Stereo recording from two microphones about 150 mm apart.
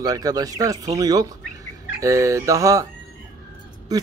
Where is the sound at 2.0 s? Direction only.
20° right (ahead or behind).